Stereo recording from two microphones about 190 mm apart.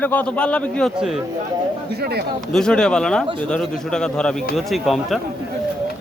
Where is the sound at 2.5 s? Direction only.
5° left (ahead or behind).